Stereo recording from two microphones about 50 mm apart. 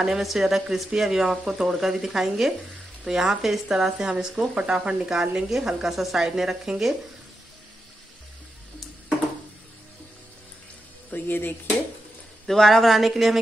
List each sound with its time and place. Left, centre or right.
0.0 s speech: centre
4.1 s speech: centre
11.1 s speech: left
12.4 s speech: centre